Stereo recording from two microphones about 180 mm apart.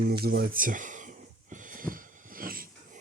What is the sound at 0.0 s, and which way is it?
Speech, 60° right (ahead or behind).